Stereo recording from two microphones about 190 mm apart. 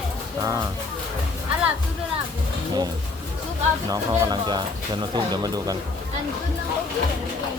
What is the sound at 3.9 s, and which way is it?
Speech, 20° right (ahead or behind).